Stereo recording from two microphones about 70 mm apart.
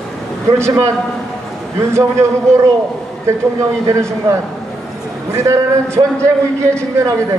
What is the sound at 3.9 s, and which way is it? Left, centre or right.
A man's voice, right.